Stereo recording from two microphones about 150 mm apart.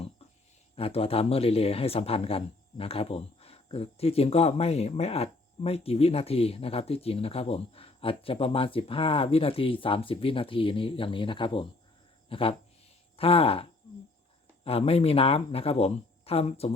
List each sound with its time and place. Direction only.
0.8 s a man's voice: 40° left (ahead or behind)